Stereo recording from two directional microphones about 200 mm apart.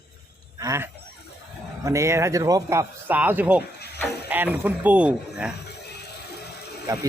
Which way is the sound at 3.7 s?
55° left (ahead or behind).